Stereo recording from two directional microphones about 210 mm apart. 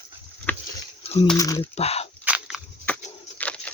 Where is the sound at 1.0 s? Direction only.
30° left (ahead or behind).